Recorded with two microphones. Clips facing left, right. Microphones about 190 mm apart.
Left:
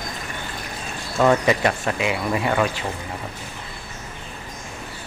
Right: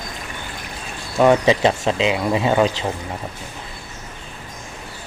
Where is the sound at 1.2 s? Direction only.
20° right (ahead or behind).